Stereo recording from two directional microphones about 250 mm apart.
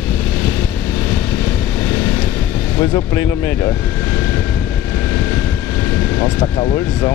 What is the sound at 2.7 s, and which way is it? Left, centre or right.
Speech, centre.